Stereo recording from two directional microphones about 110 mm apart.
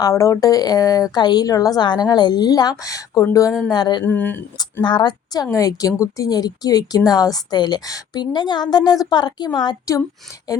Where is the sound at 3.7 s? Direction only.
40° left (ahead or behind).